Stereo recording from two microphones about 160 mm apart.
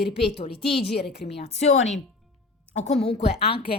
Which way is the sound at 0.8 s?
90° left.